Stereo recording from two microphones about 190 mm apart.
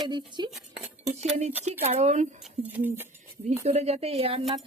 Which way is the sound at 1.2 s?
35° right (ahead or behind).